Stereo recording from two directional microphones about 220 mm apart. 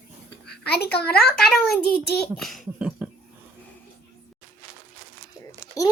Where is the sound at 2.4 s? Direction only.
Centre (ahead or behind).